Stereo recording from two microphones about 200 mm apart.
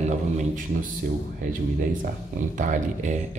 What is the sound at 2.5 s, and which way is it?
Speech, 40° right (ahead or behind).